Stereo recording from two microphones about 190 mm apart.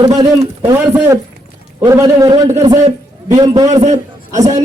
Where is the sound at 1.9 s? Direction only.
20° right (ahead or behind).